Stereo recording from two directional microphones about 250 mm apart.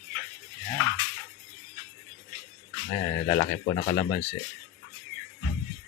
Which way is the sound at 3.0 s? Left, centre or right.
Left.